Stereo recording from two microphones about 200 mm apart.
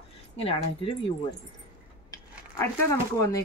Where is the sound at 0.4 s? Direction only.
30° left (ahead or behind).